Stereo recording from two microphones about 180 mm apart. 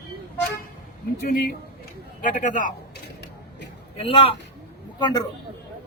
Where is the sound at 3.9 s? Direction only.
30° left (ahead or behind).